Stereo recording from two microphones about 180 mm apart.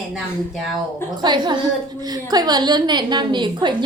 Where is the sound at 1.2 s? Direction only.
25° right (ahead or behind).